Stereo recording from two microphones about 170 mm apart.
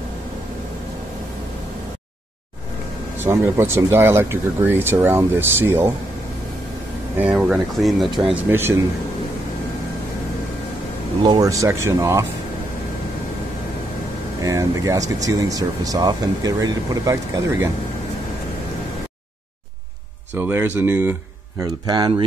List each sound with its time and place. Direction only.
3.2 s speech: 15° right (ahead or behind)
7.2 s speech: 10° right (ahead or behind)
11.2 s speech: 20° right (ahead or behind)
14.4 s speech: 20° right (ahead or behind)
20.3 s speech: 10° right (ahead or behind)
21.8 s speech: 25° right (ahead or behind)